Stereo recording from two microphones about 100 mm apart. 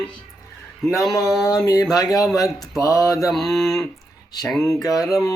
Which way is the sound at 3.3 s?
5° left (ahead or behind).